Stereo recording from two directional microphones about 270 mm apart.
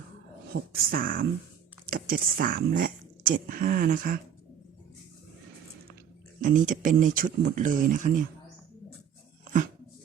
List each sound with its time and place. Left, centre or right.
0.5 s speech: right
6.4 s speech: right
9.4 s dog: right